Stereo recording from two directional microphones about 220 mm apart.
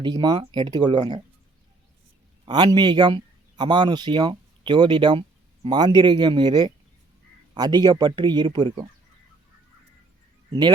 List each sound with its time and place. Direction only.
0.0 s speech: 20° right (ahead or behind)
2.5 s speech: 20° right (ahead or behind)